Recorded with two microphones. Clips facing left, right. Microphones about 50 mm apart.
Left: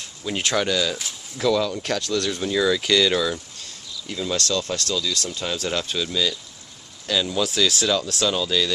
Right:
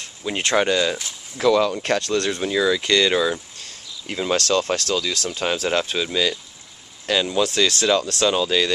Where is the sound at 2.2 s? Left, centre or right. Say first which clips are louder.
Left 1 dB; centre.